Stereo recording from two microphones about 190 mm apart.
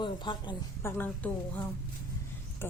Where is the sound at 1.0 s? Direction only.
10° left (ahead or behind).